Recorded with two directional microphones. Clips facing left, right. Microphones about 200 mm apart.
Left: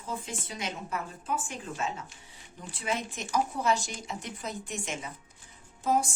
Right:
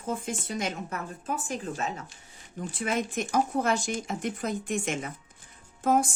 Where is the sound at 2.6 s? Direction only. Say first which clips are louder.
Right 4 dB; 50° right (ahead or behind).